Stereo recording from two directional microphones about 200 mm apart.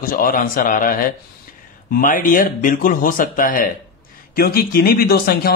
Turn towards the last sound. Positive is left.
turn(degrees=50)  # may be behind; listen again after turning